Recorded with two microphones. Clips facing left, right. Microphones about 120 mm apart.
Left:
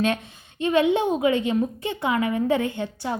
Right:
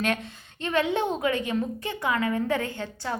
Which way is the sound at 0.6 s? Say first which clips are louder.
Left 5 dB; 20° left (ahead or behind).